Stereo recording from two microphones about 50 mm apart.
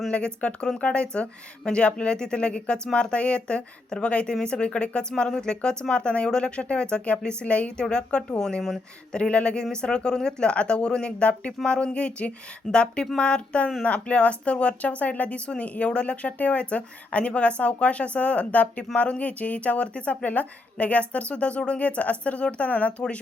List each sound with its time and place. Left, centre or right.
0.1 s speech: left